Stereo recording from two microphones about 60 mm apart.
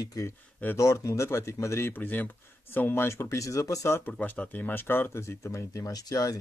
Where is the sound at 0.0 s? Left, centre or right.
Left.